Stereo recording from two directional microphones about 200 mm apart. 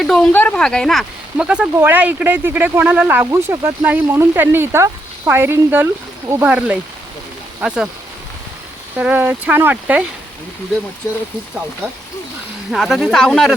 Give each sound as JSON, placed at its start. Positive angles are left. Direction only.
{"t": 0.0, "sound": "speech", "side_deg": 5}
{"t": 9.0, "sound": "speech", "side_deg": -10}
{"t": 12.7, "sound": "speech", "side_deg": 0}